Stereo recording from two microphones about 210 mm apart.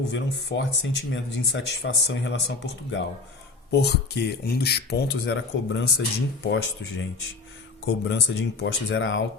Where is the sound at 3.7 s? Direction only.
50° left (ahead or behind).